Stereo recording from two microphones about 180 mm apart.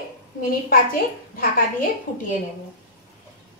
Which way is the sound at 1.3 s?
50° left (ahead or behind).